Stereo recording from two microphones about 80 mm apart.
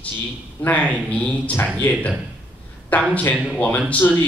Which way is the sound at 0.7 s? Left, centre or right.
Centre.